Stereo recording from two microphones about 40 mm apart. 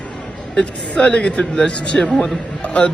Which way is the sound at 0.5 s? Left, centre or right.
Left.